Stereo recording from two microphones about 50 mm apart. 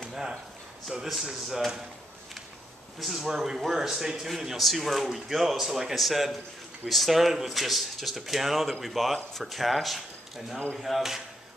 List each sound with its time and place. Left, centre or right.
0.0 s a sound: centre
1.0 s speech: centre
3.0 s speech: centre